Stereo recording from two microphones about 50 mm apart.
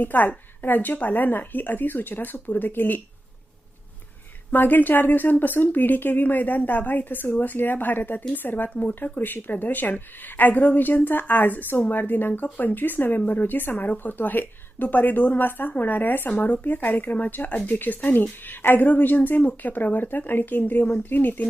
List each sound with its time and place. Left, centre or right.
0.0 s speech: left
4.5 s speech: left